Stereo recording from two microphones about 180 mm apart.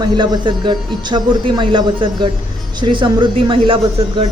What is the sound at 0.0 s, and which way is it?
A woman's voice, 25° right (ahead or behind).